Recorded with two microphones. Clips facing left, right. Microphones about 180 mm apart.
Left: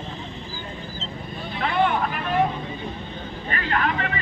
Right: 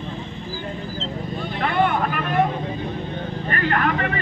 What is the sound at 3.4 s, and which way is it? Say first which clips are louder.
Vehicle: right 3 dB; 50° right (ahead or behind).